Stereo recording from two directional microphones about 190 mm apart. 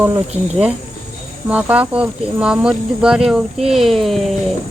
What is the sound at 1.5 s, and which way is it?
Speech, 5° right (ahead or behind).